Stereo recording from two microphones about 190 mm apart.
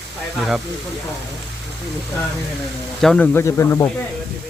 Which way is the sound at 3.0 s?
5° left (ahead or behind).